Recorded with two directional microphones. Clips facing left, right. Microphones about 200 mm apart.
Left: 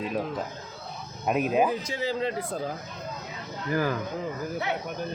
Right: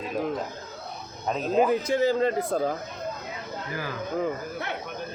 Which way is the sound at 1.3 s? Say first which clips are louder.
Even; 10° left (ahead or behind).